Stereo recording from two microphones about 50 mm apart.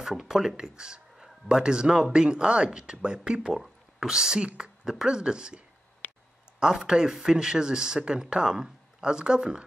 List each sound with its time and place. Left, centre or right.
0.0 s speech: centre
6.6 s speech: centre